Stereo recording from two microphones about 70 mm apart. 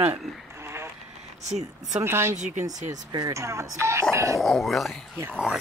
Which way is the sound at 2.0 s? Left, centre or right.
Right.